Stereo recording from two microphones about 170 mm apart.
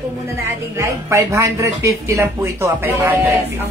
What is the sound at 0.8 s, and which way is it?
Speech, 15° right (ahead or behind).